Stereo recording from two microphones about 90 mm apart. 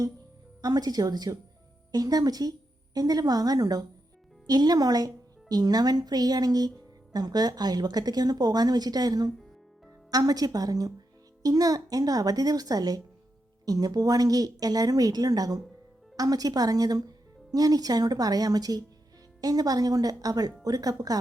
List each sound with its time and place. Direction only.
0.6 s a woman's voice: 45° right (ahead or behind)